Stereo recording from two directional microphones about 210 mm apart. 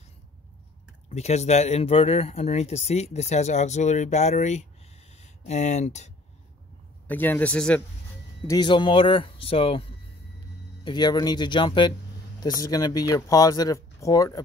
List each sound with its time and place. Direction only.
1.0 s speech: 30° left (ahead or behind)
7.1 s speech: 10° left (ahead or behind)
8.5 s speech: 20° left (ahead or behind)